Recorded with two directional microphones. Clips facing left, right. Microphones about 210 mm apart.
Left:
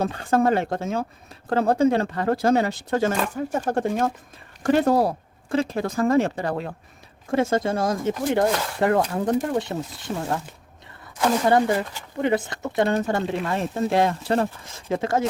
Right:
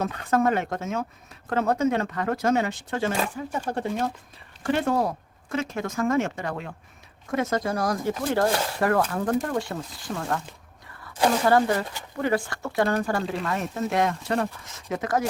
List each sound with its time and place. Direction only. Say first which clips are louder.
0.0 s speech: left 2 dB; 30° left (ahead or behind)
11.4 s speech: left 3 dB; 20° left (ahead or behind)